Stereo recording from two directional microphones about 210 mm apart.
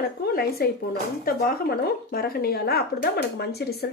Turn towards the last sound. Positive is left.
turn(degrees=50)  # may be behind; listen again after turning